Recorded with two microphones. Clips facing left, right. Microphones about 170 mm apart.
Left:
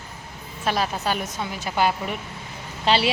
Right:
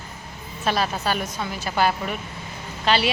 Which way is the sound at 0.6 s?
15° left (ahead or behind).